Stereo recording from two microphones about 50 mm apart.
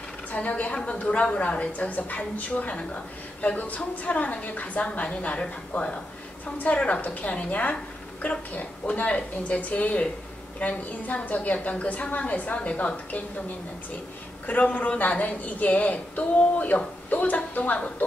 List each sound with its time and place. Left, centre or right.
0.3 s a woman's voice: left
14.4 s a woman's voice: left